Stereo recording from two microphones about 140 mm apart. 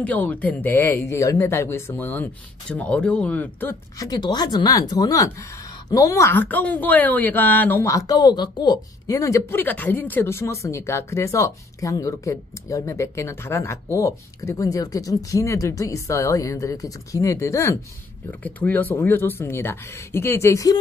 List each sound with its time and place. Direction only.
0.0 s speech: 10° left (ahead or behind)
4.0 s speech: 30° left (ahead or behind)